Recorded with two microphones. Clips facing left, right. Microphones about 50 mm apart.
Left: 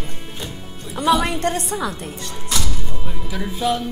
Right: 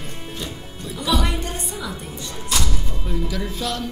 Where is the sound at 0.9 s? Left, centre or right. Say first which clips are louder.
Left 5 dB; left.